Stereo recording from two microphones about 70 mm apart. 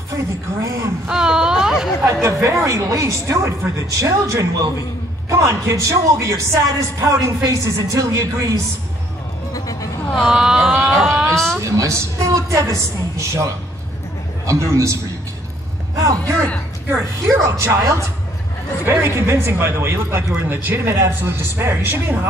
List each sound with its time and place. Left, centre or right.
0.1 s speech: right
1.0 s a sound: centre
2.2 s speech: right
9.5 s a sound: left
10.2 s a sound: centre
11.3 s a woman's voice: centre
11.6 s speech: right
16.0 s a man's voice: right
16.3 s a woman's voice: centre
16.9 s speech: right
18.9 s speech: right